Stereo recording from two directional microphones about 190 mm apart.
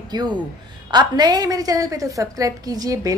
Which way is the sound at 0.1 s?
20° right (ahead or behind).